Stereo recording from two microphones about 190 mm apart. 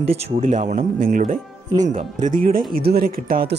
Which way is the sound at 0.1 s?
40° right (ahead or behind).